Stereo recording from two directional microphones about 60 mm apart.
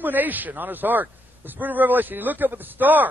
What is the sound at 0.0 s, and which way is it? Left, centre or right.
A man's voice, right.